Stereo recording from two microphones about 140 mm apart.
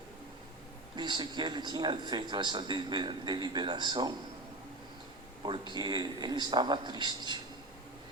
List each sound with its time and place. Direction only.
0.9 s a man's voice: 30° right (ahead or behind)
5.4 s a man's voice: 35° right (ahead or behind)